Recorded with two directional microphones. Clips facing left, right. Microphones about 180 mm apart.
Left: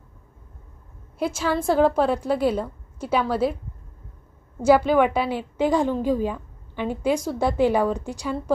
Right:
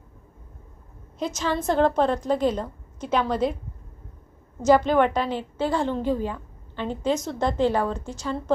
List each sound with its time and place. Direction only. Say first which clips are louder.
1.2 s a woman's voice: left 2 dB; 5° left (ahead or behind)
4.6 s a woman's voice: left 1 dB; 10° left (ahead or behind)